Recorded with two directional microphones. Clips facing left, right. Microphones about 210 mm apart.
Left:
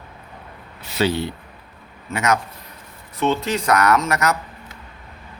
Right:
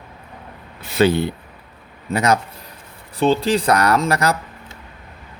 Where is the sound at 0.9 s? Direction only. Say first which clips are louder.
Right 5 dB; 55° right (ahead or behind).